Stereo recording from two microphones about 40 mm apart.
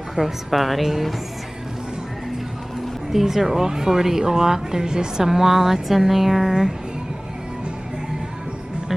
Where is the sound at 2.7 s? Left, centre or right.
Centre.